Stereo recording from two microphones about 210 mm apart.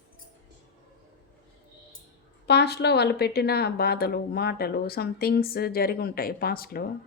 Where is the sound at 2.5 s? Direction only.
50° left (ahead or behind).